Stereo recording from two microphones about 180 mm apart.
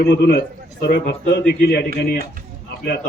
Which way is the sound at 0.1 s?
65° left (ahead or behind).